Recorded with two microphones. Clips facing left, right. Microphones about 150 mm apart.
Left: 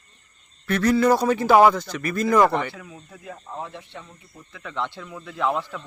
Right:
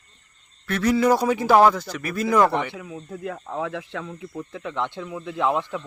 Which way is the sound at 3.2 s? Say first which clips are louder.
Right 6 dB; 70° right (ahead or behind).